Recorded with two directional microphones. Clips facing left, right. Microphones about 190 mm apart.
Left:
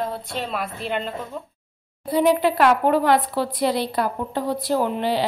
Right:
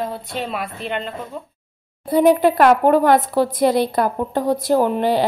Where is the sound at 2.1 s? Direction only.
50° right (ahead or behind).